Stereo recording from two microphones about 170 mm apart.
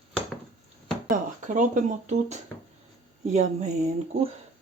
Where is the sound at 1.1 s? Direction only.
50° right (ahead or behind).